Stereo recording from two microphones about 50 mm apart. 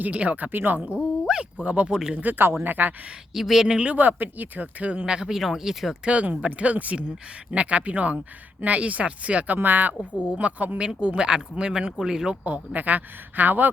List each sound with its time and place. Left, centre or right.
0.0 s speech: right
1.3 s speech: centre
1.6 s speech: right
1.9 s speech: centre
2.4 s speech: right
3.3 s speech: centre
3.9 s speech: right
5.0 s speech: centre
6.1 s speech: right
9.6 s speech: right
10.2 s speech: right
10.8 s speech: centre
12.5 s speech: right